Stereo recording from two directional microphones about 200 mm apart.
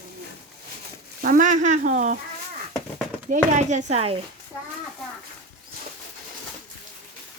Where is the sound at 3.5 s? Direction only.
35° right (ahead or behind).